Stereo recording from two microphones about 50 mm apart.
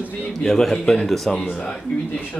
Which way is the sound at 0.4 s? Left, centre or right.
Centre.